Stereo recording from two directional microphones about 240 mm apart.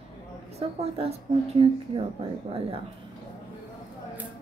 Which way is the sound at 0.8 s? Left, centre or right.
Right.